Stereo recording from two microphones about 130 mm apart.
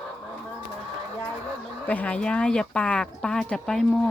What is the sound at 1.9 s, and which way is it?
Speech, 10° left (ahead or behind).